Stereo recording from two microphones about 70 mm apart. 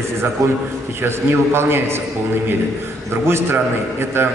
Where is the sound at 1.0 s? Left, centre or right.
Right.